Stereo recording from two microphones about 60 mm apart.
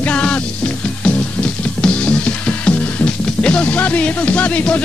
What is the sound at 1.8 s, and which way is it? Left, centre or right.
Music, centre.